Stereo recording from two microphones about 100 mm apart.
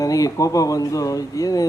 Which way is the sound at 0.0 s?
35° left (ahead or behind).